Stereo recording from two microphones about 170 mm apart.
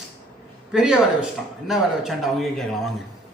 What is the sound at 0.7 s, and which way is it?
Speech, 5° right (ahead or behind).